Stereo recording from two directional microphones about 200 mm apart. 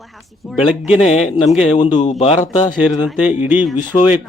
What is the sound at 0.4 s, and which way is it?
Speech, centre (ahead or behind).